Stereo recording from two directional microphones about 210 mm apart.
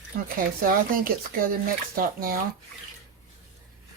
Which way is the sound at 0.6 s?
40° right (ahead or behind).